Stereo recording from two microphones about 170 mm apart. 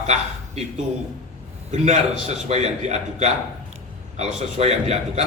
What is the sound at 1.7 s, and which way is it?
A man's voice, 40° right (ahead or behind).